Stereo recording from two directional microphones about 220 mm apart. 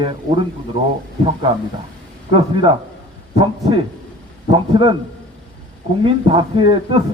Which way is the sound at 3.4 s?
20° right (ahead or behind).